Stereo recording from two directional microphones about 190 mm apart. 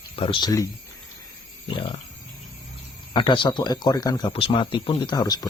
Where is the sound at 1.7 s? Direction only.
25° left (ahead or behind).